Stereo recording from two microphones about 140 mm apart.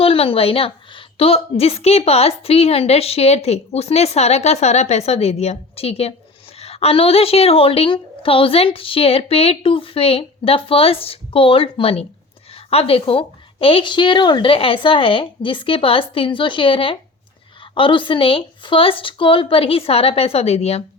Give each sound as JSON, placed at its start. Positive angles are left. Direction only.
{"t": 0.0, "sound": "a woman's voice", "side_deg": 40}